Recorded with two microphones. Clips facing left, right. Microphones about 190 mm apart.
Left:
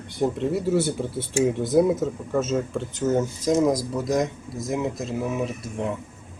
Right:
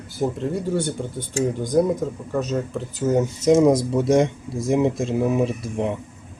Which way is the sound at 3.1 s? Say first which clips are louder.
Right 5 dB; 20° right (ahead or behind).